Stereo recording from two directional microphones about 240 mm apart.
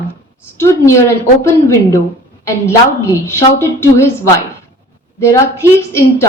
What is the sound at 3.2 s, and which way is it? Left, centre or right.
A woman's voice, centre.